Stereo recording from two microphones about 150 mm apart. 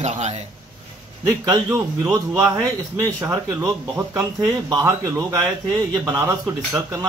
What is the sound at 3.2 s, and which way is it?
Speech, 20° right (ahead or behind).